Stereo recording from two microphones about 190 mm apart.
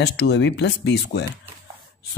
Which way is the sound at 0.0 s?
65° left (ahead or behind).